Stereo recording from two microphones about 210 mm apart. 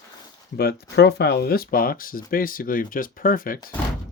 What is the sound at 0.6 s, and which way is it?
Speech, 50° left (ahead or behind).